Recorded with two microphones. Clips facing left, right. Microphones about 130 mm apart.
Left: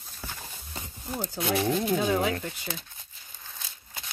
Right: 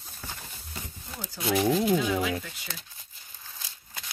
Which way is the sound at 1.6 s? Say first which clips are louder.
Right 4 dB; centre (ahead or behind).